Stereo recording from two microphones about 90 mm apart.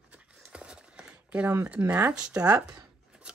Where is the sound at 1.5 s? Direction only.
20° right (ahead or behind).